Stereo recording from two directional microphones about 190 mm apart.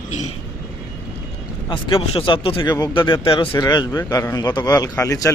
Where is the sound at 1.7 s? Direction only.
25° left (ahead or behind).